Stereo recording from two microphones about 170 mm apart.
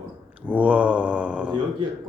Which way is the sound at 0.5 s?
10° right (ahead or behind).